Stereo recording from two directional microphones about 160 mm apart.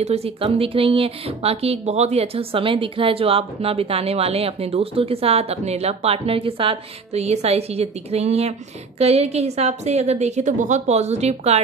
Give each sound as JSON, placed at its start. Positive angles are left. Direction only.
{"t": 0.0, "sound": "a woman's voice", "side_deg": -40}